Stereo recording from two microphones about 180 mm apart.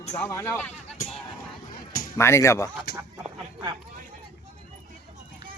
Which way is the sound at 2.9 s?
65° left (ahead or behind).